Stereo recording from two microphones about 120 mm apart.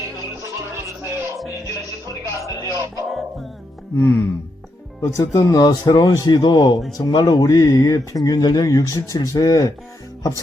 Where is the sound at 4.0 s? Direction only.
20° left (ahead or behind).